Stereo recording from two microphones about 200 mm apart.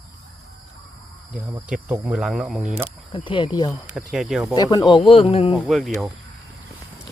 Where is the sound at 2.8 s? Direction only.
25° left (ahead or behind).